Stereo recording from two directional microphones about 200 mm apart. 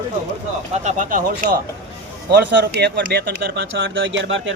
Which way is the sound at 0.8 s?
40° right (ahead or behind).